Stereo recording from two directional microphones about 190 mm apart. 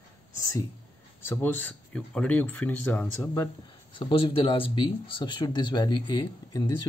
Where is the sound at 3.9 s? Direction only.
25° left (ahead or behind).